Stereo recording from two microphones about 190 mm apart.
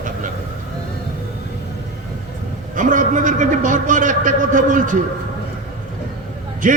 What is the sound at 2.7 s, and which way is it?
A man's voice, 45° right (ahead or behind).